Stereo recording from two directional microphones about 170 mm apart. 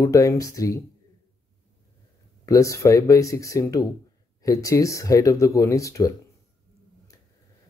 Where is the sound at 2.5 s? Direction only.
20° left (ahead or behind).